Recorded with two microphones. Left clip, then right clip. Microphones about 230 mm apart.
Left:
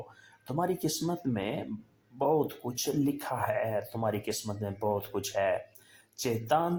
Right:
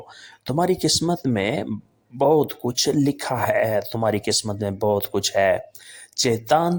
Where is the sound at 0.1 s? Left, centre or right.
Right.